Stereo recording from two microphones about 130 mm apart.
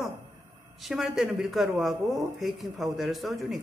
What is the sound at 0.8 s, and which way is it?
Speech, centre (ahead or behind).